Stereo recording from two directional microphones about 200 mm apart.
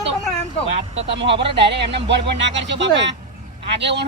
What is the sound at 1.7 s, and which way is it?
Speech, 60° right (ahead or behind).